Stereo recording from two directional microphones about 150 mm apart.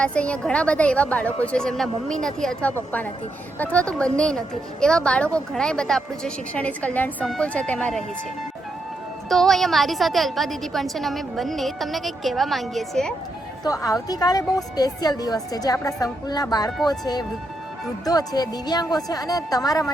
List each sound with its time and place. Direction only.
0.0 s a woman's voice: 10° left (ahead or behind)
9.3 s a woman's voice: centre (ahead or behind)
13.7 s a woman's voice: 25° left (ahead or behind)